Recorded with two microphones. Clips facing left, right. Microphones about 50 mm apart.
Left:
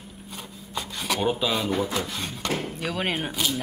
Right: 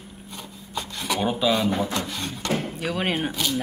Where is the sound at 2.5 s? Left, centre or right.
Centre.